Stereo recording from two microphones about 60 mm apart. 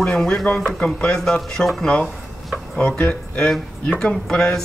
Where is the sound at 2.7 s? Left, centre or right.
Centre.